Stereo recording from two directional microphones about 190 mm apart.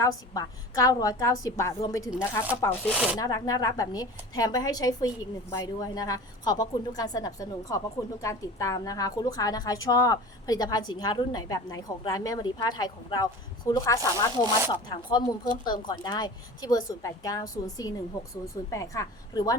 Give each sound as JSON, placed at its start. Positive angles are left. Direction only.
{"t": 0.0, "sound": "a woman's voice", "side_deg": 20}